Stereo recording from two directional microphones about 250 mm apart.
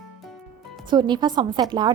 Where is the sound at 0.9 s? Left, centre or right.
Centre.